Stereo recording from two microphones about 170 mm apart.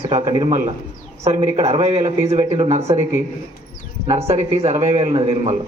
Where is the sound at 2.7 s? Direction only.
40° right (ahead or behind).